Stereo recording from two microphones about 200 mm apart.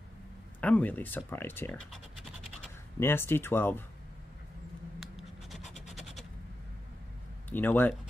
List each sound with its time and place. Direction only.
0.6 s speech: 5° left (ahead or behind)
3.0 s speech: 10° left (ahead or behind)
5.0 s scratch: centre (ahead or behind)
5.6 s a sound: 35° left (ahead or behind)
7.4 s speech: 10° left (ahead or behind)